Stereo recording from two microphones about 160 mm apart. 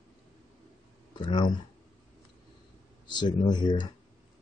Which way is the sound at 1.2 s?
30° left (ahead or behind).